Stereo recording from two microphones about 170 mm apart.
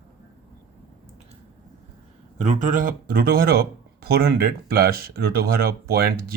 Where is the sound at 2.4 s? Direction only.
45° right (ahead or behind); by 6.1 s 65° right (ahead or behind).